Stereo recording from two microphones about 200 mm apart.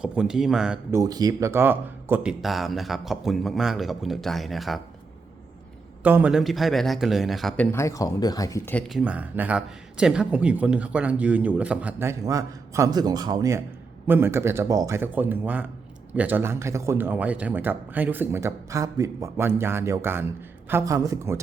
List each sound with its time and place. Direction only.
0.0 s speech: 5° right (ahead or behind)
0.9 s speech: 20° right (ahead or behind); by 4.8 s centre (ahead or behind)
6.0 s speech: 10° right (ahead or behind); by 8.8 s 15° left (ahead or behind)
8.9 s speech: 5° right (ahead or behind)